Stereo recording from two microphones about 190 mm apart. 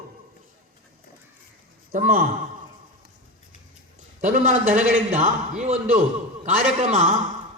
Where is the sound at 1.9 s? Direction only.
50° right (ahead or behind).